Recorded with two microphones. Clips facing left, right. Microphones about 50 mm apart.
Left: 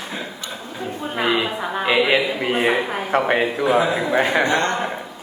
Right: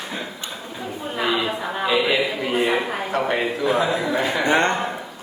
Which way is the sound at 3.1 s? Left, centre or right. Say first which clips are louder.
Left 5 dB; left.